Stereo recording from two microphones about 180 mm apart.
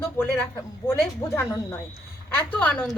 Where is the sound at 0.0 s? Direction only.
10° left (ahead or behind).